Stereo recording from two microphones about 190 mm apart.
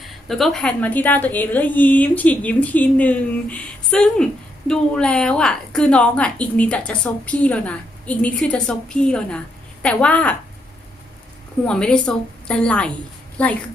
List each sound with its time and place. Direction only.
0.0 s a woman's voice: centre (ahead or behind)
11.6 s a woman's voice: 5° left (ahead or behind)